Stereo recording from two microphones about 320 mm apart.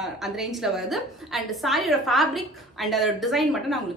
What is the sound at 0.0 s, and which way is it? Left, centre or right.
A woman's voice, centre.